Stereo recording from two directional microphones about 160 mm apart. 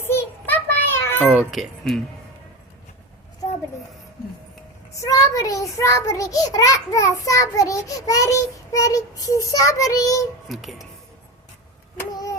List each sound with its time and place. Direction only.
0.0 s a sound: 15° left (ahead or behind)
1.3 s speech: 5° right (ahead or behind)
4.9 s a child's voice: 20° left (ahead or behind)
10.5 s speech: centre (ahead or behind)
12.1 s child singing: 20° left (ahead or behind)